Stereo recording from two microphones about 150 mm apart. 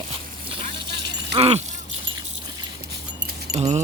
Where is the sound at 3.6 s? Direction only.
45° right (ahead or behind).